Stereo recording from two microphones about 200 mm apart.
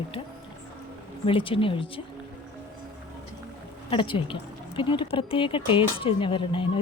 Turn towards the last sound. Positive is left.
turn(degrees=25)  # may be behind; listen again after turning